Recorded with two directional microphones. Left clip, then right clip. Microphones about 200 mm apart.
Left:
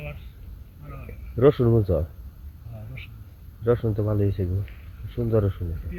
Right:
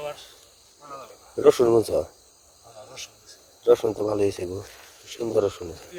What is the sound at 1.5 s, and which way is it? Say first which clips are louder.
Speech: right 4 dB; 10° right (ahead or behind).